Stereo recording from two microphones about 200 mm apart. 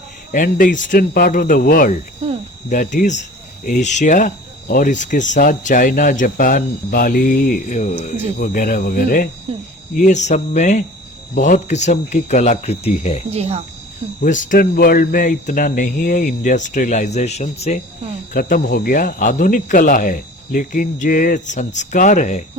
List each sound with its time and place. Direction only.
0.3 s speech: 45° left (ahead or behind)
13.3 s speech: 30° right (ahead or behind)
14.2 s speech: 40° left (ahead or behind)